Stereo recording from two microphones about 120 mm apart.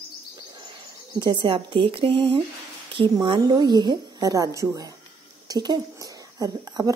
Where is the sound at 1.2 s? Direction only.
40° right (ahead or behind).